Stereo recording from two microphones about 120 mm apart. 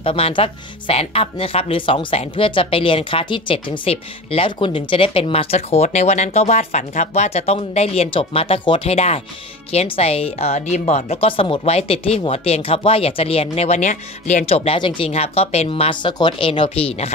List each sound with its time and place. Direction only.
0.0 s speech: 50° left (ahead or behind); by 14.4 s 85° left
14.4 s speech: 55° left (ahead or behind)